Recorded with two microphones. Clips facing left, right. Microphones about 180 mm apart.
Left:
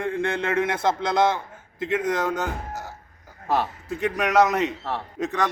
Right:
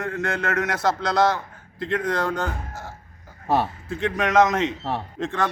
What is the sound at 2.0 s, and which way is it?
Speech, 5° left (ahead or behind).